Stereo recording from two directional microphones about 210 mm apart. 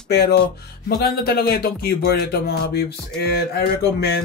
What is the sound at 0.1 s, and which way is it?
A man's voice, 50° left (ahead or behind).